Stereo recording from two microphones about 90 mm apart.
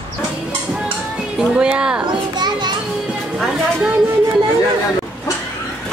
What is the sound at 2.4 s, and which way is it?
Children playing, 55° right (ahead or behind).